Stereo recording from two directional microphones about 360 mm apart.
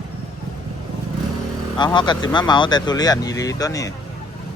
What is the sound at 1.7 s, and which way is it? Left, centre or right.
Speech, centre.